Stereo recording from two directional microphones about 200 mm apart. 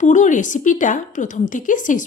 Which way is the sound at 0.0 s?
40° left (ahead or behind).